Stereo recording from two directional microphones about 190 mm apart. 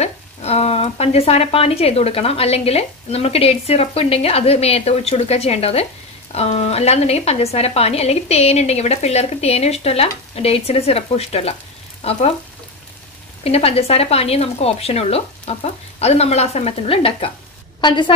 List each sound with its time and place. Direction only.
0.0 s speech: 35° left (ahead or behind)
13.4 s a woman's voice: 30° left (ahead or behind)